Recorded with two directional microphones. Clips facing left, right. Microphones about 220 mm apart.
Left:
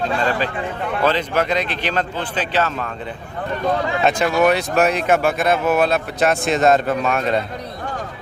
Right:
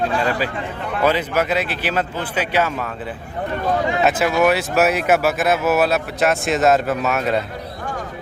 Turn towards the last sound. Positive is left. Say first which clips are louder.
# left 1 dB
turn(degrees=-5)  # may be behind; listen again after turning